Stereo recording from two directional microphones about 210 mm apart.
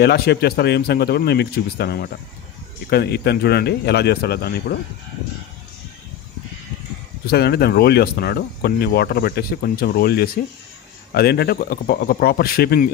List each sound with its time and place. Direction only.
0.0 s speech: 50° left (ahead or behind)
7.2 s speech: 50° left (ahead or behind)